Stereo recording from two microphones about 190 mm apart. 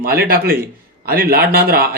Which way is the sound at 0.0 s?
50° right (ahead or behind).